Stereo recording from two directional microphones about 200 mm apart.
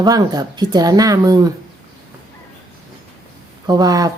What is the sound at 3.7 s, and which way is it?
Speech, 20° right (ahead or behind).